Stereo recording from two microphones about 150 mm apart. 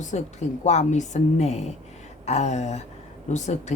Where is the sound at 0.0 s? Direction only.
55° left (ahead or behind).